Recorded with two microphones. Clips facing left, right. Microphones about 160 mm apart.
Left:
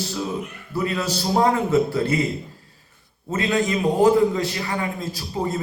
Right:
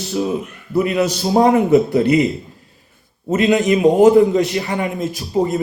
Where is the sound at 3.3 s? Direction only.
20° right (ahead or behind).